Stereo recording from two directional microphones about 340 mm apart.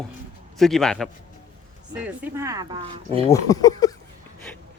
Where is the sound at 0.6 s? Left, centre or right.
Centre.